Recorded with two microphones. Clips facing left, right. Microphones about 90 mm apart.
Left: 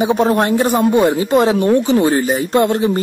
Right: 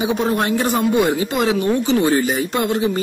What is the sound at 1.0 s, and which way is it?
Speech, 25° left (ahead or behind).